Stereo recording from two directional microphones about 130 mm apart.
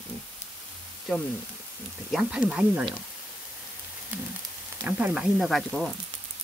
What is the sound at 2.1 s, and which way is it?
Speech, 10° right (ahead or behind).